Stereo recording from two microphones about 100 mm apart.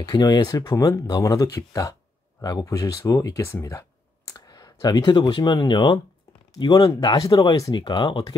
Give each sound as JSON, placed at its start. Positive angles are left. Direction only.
{"t": 0.0, "sound": "speech", "side_deg": 45}
{"t": 4.3, "sound": "a sound", "side_deg": 40}
{"t": 5.3, "sound": "speech", "side_deg": 50}